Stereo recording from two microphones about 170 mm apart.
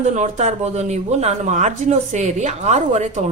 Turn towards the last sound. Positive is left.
turn(degrees=-45)  # may be behind; listen again after turning